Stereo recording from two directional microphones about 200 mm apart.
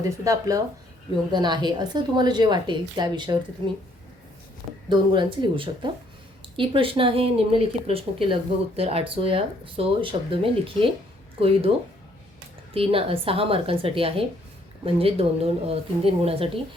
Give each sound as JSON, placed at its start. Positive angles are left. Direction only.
{"t": 0.3, "sound": "speech", "side_deg": -15}
{"t": 4.9, "sound": "speech", "side_deg": -25}
{"t": 12.7, "sound": "speech", "side_deg": -30}